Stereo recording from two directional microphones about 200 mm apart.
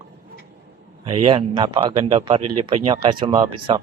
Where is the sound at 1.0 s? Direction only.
25° right (ahead or behind).